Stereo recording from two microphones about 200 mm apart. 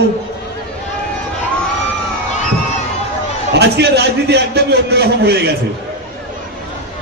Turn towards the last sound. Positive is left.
turn(degrees=-55)  # may be behind; listen again after turning